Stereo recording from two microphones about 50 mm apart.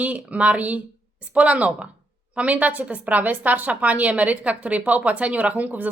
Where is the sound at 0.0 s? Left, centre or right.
Right.